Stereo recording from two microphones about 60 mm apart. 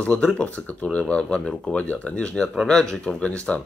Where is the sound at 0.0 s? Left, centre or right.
Centre.